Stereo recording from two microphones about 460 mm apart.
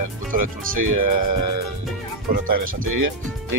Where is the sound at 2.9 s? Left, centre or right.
Right.